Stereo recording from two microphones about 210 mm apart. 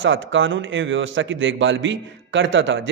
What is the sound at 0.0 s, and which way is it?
A man's voice, 65° right (ahead or behind).